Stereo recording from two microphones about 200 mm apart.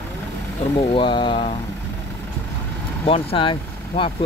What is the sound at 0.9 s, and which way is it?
Speech, 25° left (ahead or behind).